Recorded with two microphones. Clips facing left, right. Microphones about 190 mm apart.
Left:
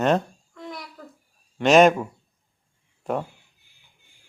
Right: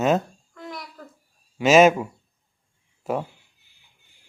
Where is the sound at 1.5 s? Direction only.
5° right (ahead or behind).